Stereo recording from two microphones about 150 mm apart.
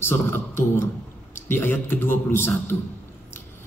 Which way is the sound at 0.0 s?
15° left (ahead or behind).